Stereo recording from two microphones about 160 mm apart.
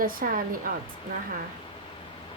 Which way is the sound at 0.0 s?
60° right (ahead or behind).